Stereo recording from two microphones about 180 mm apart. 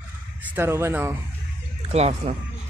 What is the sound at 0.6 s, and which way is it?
Speech, 15° right (ahead or behind).